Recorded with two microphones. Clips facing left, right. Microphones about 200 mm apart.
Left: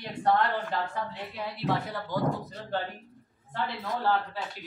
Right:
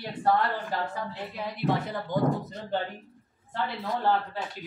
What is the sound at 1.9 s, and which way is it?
Speech, 20° right (ahead or behind).